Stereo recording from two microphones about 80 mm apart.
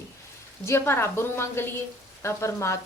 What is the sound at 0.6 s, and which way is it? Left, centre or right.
A woman's voice, left.